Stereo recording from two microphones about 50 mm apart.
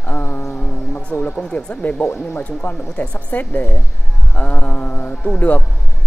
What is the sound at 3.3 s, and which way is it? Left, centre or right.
Speech, left.